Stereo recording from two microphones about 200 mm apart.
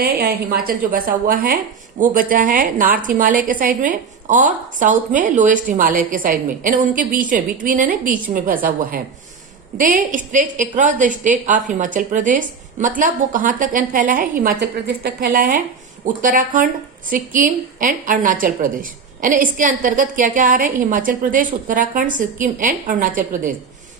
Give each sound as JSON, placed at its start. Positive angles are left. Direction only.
{"t": 0.0, "sound": "a woman's voice", "side_deg": -50}